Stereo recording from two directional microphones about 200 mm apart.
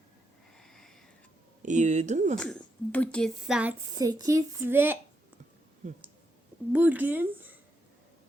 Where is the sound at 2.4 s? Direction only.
5° left (ahead or behind).